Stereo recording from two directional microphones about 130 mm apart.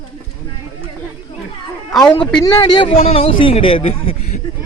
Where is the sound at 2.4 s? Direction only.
35° left (ahead or behind).